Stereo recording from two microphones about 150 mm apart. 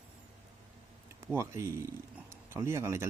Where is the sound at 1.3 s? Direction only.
20° right (ahead or behind).